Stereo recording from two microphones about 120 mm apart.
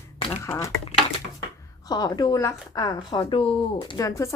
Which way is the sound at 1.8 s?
35° left (ahead or behind).